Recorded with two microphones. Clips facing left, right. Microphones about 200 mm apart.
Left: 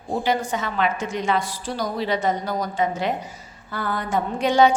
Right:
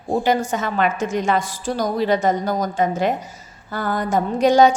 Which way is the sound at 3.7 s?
45° right (ahead or behind).